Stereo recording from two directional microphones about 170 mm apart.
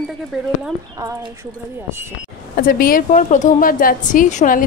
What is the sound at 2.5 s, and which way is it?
A woman's voice, 55° left (ahead or behind).